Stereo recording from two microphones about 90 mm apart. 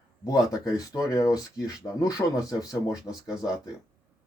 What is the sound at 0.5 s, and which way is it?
Speech, 40° left (ahead or behind).